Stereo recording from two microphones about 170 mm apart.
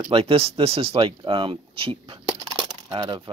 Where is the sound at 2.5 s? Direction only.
30° right (ahead or behind).